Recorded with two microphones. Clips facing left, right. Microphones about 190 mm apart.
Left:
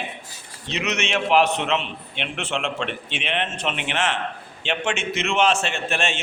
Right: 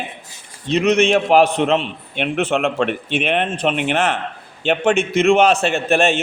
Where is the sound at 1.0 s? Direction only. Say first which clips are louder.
Right 6 dB; 40° right (ahead or behind).